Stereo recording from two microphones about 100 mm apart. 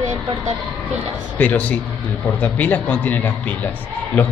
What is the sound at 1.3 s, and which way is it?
A man's voice, 15° left (ahead or behind).